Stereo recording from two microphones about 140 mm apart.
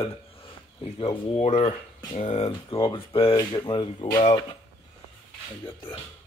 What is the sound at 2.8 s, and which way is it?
Speech, 40° left (ahead or behind).